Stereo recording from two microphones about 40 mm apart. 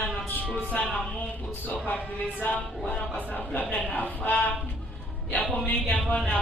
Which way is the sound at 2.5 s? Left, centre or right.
Left.